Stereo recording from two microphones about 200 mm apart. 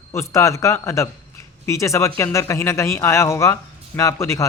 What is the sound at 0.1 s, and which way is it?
A man's voice, 15° left (ahead or behind).